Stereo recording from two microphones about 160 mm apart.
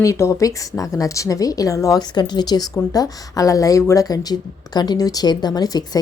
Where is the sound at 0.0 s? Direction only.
20° left (ahead or behind).